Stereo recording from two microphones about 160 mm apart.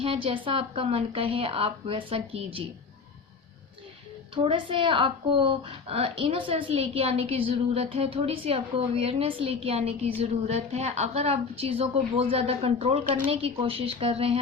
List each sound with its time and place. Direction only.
0.0 s a woman's voice: 35° right (ahead or behind)
4.4 s a woman's voice: 30° right (ahead or behind)